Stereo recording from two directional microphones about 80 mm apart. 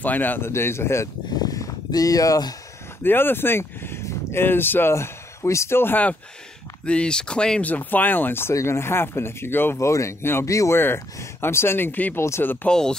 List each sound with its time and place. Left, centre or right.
0.0 s speech: left
1.4 s a sound: left
3.0 s speech: left
6.9 s speech: centre
7.7 s speech: left
10.8 s speech: left
12.6 s speech: centre